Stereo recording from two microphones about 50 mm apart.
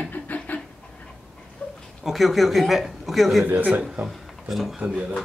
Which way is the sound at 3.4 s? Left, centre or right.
Right.